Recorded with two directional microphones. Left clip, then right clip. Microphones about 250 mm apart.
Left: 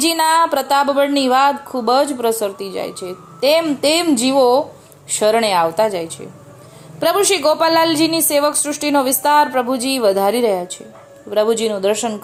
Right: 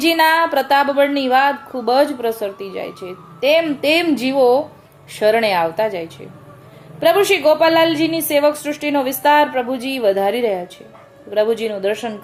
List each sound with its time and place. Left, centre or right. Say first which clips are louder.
0.0 s a woman's voice: even; left